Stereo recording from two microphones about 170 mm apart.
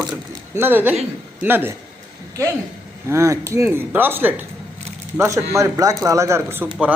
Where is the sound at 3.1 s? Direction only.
15° right (ahead or behind).